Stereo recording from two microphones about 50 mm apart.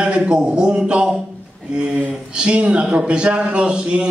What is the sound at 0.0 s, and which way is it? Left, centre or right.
A man's voice, right.